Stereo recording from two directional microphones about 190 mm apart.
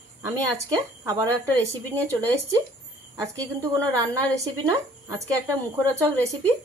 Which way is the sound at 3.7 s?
15° right (ahead or behind).